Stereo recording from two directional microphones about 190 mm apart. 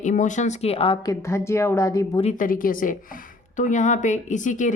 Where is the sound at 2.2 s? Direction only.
40° left (ahead or behind).